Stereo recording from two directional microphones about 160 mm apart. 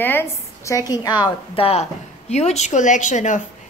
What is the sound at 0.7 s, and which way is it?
A woman's voice, 20° left (ahead or behind).